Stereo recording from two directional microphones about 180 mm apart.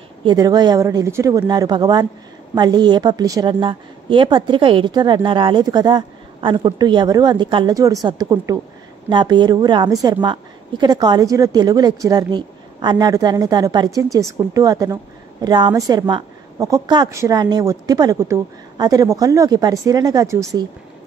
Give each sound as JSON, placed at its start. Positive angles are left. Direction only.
{"t": 0.2, "sound": "a woman's voice", "side_deg": -25}